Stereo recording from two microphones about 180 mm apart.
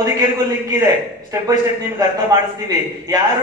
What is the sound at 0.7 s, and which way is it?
A man's voice, 20° right (ahead or behind).